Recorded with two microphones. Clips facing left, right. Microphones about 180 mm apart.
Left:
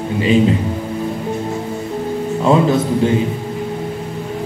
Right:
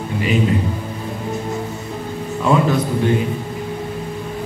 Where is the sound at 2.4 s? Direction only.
25° left (ahead or behind).